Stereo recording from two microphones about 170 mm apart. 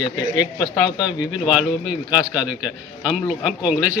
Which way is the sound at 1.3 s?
5° right (ahead or behind).